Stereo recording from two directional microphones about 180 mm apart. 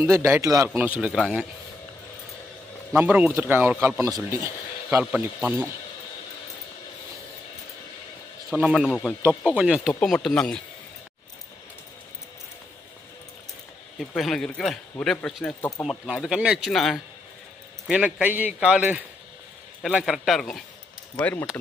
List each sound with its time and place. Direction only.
0.0 s a man's voice: 15° right (ahead or behind)
2.9 s a man's voice: 10° right (ahead or behind)
8.4 s speech: 5° right (ahead or behind)
14.2 s a man's voice: centre (ahead or behind)